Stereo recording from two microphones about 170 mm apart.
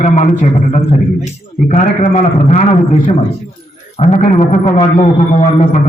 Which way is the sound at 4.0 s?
45° left (ahead or behind).